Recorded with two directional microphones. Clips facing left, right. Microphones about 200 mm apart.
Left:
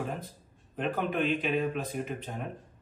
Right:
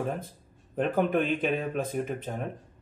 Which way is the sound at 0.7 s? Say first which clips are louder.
Right 5 dB; 50° right (ahead or behind).